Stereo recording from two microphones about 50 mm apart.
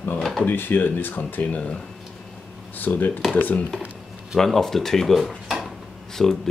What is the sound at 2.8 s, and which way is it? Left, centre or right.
Speech, left.